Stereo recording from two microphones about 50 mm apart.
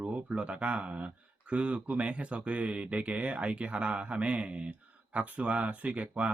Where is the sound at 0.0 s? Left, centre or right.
Right.